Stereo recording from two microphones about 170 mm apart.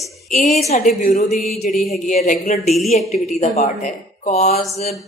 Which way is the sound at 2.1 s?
50° left (ahead or behind).